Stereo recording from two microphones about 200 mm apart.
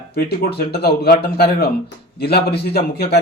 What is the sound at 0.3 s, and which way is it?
A man's voice, 55° left (ahead or behind).